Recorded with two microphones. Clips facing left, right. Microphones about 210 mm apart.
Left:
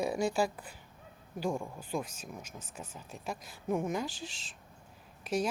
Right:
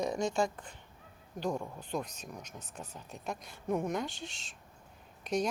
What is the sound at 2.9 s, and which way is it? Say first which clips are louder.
Speech: even; centre (ahead or behind).